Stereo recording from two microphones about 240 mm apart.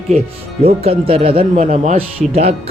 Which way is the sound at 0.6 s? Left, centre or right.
Right.